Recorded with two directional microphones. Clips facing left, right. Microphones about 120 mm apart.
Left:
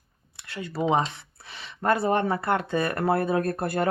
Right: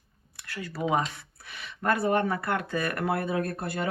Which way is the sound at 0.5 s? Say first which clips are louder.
Left 3 dB; 25° left (ahead or behind).